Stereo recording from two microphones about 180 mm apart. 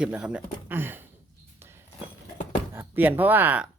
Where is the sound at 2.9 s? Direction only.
10° right (ahead or behind).